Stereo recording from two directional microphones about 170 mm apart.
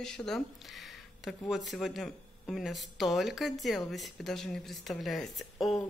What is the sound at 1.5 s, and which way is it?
Speech, centre (ahead or behind).